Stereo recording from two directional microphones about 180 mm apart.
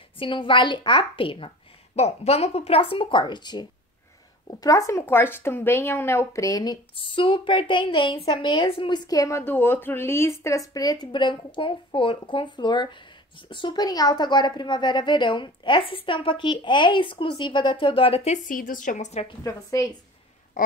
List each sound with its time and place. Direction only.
0.2 s a woman's voice: 30° left (ahead or behind); by 19.2 s 45° left (ahead or behind)
19.2 s a woman's voice: 20° left (ahead or behind)
20.5 s a sound: 50° left (ahead or behind)